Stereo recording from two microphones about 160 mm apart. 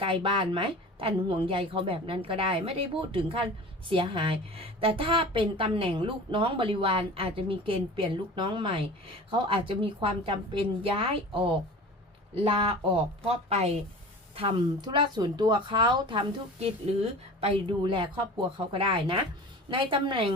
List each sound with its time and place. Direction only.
0.0 s a woman's voice: 35° right (ahead or behind)